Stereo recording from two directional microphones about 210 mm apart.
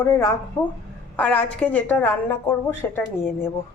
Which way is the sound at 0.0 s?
15° left (ahead or behind).